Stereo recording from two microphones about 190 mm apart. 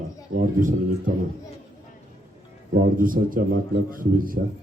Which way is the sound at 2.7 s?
45° right (ahead or behind).